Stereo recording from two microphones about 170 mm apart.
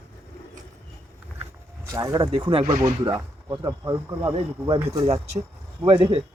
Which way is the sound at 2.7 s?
60° right (ahead or behind).